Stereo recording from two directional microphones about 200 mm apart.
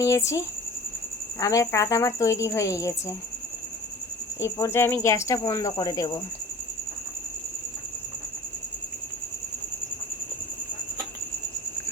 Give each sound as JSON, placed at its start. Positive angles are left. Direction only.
{"t": 0.0, "sound": "speech", "side_deg": 15}
{"t": 4.4, "sound": "speech", "side_deg": 15}